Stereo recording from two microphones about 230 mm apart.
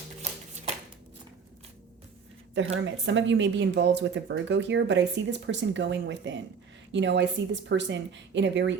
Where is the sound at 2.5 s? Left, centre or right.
Right.